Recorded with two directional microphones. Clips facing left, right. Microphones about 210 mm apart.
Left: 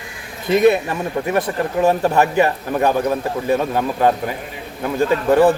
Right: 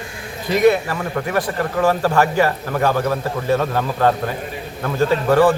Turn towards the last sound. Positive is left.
turn(degrees=20)  # may be behind; listen again after turning